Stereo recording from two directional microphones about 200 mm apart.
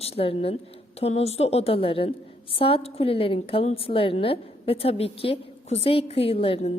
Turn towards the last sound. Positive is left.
turn(degrees=30)  # may be behind; listen again after turning